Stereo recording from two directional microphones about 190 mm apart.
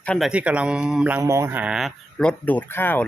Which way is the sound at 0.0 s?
5° left (ahead or behind).